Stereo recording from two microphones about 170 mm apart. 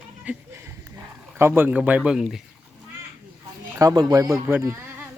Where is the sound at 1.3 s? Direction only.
15° right (ahead or behind).